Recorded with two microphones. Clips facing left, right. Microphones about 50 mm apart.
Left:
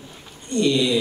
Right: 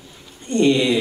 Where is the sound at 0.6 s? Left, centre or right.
Right.